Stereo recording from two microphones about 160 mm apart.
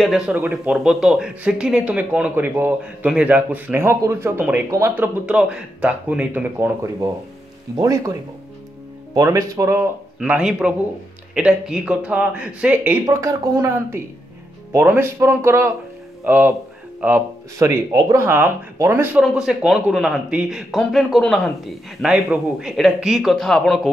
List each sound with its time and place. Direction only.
0.0 s speech: 5° right (ahead or behind)
7.7 s a woman's voice: 20° right (ahead or behind)
9.1 s speech: 20° right (ahead or behind)
10.3 s speech: 5° right (ahead or behind)
13.0 s a woman's voice: 20° right (ahead or behind)
19.2 s speech: 5° right (ahead or behind)